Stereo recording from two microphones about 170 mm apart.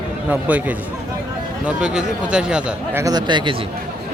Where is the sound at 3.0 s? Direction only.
25° right (ahead or behind).